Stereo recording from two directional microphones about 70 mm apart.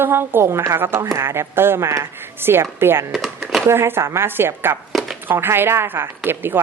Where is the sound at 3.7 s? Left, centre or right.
Right.